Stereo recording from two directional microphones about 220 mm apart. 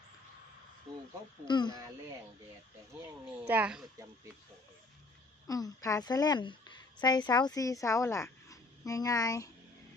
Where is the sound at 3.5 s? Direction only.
5° right (ahead or behind).